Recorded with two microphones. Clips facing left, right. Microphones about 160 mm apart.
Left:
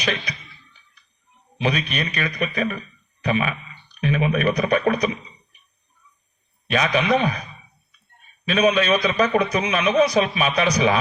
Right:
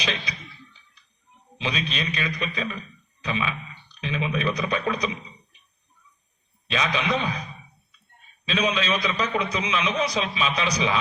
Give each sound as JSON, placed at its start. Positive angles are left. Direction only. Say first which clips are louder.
{"t": 1.6, "sound": "a man's voice", "louder": "left 5 dB", "side_deg": 55}
{"t": 6.7, "sound": "a man's voice", "louder": "left 6 dB", "side_deg": 55}
{"t": 8.4, "sound": "a man's voice", "louder": "left 7 dB", "side_deg": 55}